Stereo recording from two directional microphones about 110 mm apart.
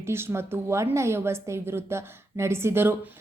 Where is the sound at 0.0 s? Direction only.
20° right (ahead or behind).